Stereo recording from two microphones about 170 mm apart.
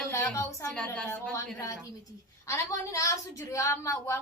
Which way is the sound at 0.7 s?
5° left (ahead or behind).